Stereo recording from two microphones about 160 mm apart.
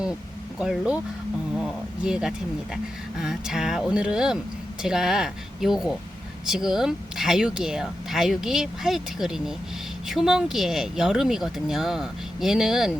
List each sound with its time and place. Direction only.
0.6 s speech: 5° right (ahead or behind)